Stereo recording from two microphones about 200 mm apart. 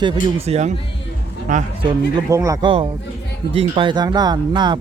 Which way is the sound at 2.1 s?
15° right (ahead or behind).